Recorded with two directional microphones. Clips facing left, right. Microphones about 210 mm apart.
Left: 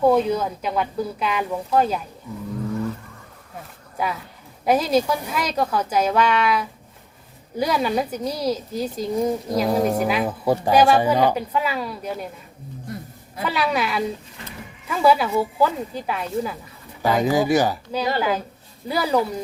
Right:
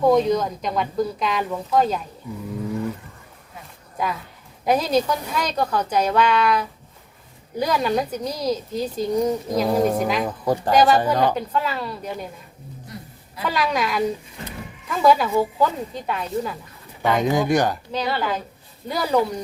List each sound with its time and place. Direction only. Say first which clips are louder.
0.1 s speech: right 1 dB; 5° left (ahead or behind)
3.9 s a woman's voice: even; 5° left (ahead or behind)
12.9 s a sound: left 5 dB; 55° left (ahead or behind)
13.4 s a woman's voice: even; 5° left (ahead or behind)